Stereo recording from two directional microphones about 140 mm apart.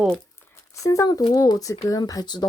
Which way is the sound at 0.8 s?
25° left (ahead or behind).